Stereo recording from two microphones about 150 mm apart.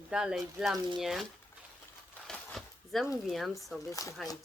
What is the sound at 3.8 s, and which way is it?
Speech, 20° left (ahead or behind).